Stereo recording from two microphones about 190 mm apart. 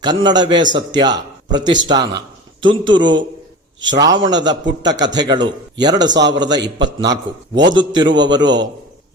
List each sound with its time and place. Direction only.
0.0 s a man's voice: 20° right (ahead or behind)